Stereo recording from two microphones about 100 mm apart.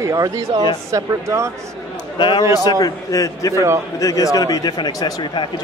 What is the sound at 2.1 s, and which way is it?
Speech, 55° left (ahead or behind).